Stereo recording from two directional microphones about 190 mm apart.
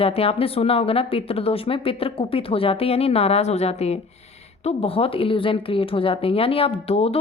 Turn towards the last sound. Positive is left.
turn(degrees=30)  # may be behind; listen again after turning